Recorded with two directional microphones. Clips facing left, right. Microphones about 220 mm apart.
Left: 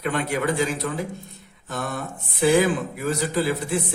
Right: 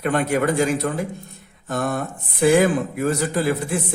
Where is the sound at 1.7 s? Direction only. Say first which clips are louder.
Right 6 dB; 50° right (ahead or behind).